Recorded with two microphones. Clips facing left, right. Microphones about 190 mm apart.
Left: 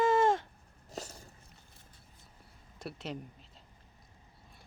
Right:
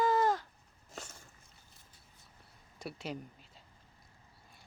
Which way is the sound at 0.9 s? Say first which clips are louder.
Left 5 dB; 35° left (ahead or behind).